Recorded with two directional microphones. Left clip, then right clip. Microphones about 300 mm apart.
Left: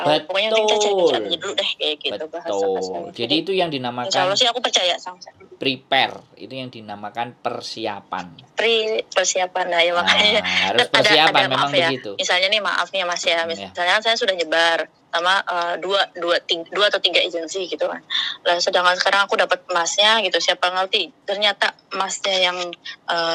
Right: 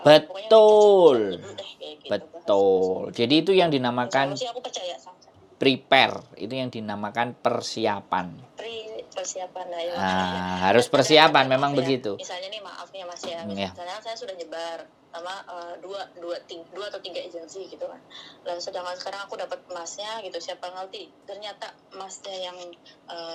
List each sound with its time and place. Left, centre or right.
0.3 s a man's voice: left
3.2 s speech: centre
4.1 s a man's voice: left
5.5 s speech: centre
8.2 s a man's voice: left
10.6 s speech: centre
11.4 s a man's voice: left